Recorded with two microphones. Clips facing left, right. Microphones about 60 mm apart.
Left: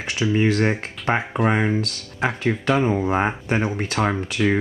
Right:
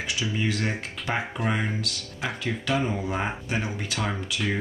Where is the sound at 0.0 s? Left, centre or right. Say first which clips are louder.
Left 8 dB; left.